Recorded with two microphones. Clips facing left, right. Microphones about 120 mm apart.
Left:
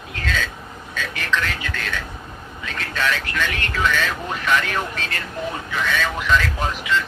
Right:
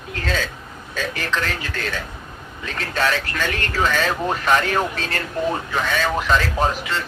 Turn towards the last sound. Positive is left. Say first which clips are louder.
# right 2 dB
turn(degrees=-35)  # may be behind; listen again after turning